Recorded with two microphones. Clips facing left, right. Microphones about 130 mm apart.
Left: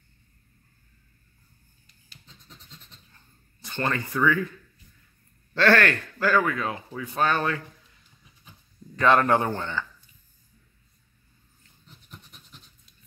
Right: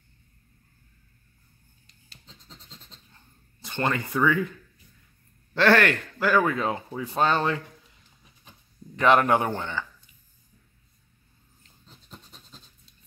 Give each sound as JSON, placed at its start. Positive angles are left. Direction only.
{"t": 2.2, "sound": "scratch", "side_deg": -25}
{"t": 3.6, "sound": "speech", "side_deg": -20}
{"t": 5.5, "sound": "speech", "side_deg": -15}
{"t": 8.9, "sound": "speech", "side_deg": -15}
{"t": 11.6, "sound": "a sound", "side_deg": -30}